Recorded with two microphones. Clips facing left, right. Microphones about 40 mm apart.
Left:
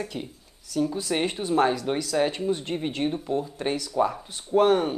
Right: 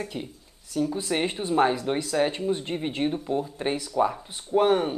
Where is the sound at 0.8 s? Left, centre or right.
Centre.